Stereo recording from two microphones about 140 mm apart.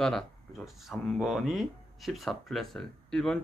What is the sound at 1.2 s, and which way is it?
Speech, centre (ahead or behind).